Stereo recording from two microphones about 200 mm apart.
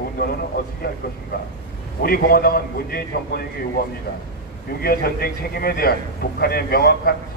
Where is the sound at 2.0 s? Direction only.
50° left (ahead or behind).